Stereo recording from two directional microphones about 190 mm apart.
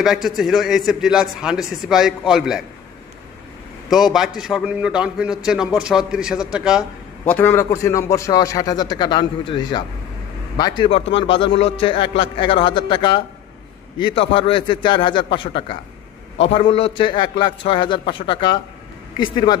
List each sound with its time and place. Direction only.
0.0 s a man's voice: centre (ahead or behind)
3.9 s a man's voice: centre (ahead or behind)
7.2 s a man's voice: 10° left (ahead or behind)